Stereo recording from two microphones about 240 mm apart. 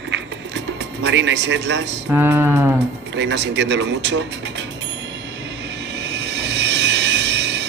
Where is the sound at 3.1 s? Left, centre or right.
Right.